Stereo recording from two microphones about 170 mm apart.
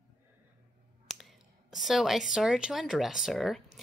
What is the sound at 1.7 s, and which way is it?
Speech, centre (ahead or behind).